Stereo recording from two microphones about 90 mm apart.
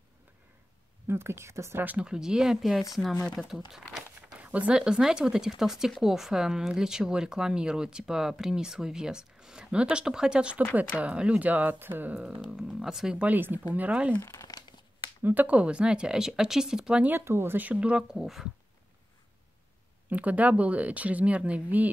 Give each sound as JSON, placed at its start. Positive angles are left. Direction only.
{"t": 1.0, "sound": "speech", "side_deg": -30}
{"t": 1.9, "sound": "speech", "side_deg": -10}
{"t": 3.2, "sound": "speech", "side_deg": 10}
{"t": 3.9, "sound": "speech", "side_deg": -10}
{"t": 12.4, "sound": "speech", "side_deg": -5}
{"t": 13.2, "sound": "speech", "side_deg": -20}
{"t": 14.2, "sound": "speech", "side_deg": 30}
{"t": 15.2, "sound": "speech", "side_deg": -15}
{"t": 17.0, "sound": "speech", "side_deg": -25}
{"t": 20.1, "sound": "speech", "side_deg": -15}